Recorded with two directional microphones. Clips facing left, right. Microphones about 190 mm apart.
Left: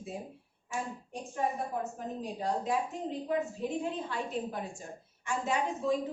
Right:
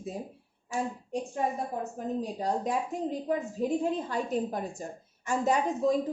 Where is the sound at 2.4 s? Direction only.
40° right (ahead or behind).